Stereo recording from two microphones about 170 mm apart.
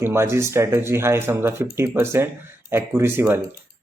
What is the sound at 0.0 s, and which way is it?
Speech, 15° right (ahead or behind).